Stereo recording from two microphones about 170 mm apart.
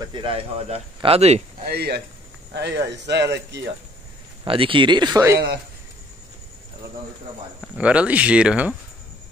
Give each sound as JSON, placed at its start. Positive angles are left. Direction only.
{"t": 0.0, "sound": "speech", "side_deg": -30}
{"t": 1.7, "sound": "speech", "side_deg": -70}
{"t": 2.5, "sound": "speech", "side_deg": -90}
{"t": 4.5, "sound": "speech", "side_deg": -30}
{"t": 7.7, "sound": "speech", "side_deg": -5}